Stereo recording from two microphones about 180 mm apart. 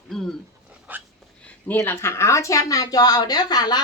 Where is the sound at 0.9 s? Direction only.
10° right (ahead or behind).